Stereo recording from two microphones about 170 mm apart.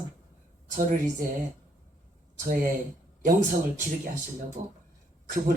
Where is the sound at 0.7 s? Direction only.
50° right (ahead or behind).